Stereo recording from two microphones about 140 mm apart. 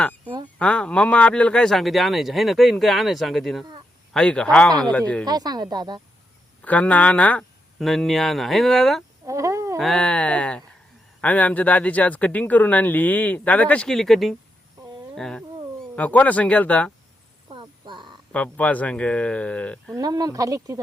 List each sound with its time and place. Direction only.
0.6 s speech: 10° left (ahead or behind)
5.2 s speech: 30° right (ahead or behind)
6.6 s speech: 10° left (ahead or behind)
9.2 s a sound: 20° right (ahead or behind)
9.7 s speech: 5° left (ahead or behind)
15.1 s cat: 5° left (ahead or behind)
16.0 s speech: 10° left (ahead or behind)
17.5 s a sound: 35° right (ahead or behind)
18.3 s speech: 10° left (ahead or behind)
20.0 s speech: 30° right (ahead or behind)